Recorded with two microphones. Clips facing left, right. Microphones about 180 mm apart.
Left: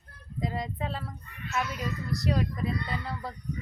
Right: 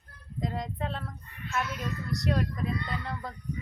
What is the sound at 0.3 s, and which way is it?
Speech, 5° left (ahead or behind).